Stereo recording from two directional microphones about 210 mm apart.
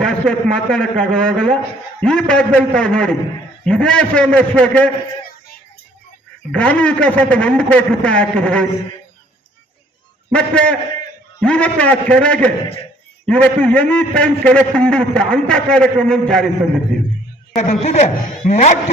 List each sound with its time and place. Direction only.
0.0 s a man's voice: 5° left (ahead or behind)
6.5 s a man's voice: 5° left (ahead or behind)
10.3 s a man's voice: 5° left (ahead or behind)
17.5 s a man's voice: 35° left (ahead or behind)